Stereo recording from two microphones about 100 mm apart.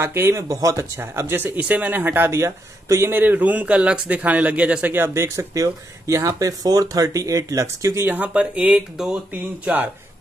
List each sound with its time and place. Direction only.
0.0 s speech: 25° right (ahead or behind)
8.0 s speech: 15° right (ahead or behind)
9.3 s speech: 15° right (ahead or behind)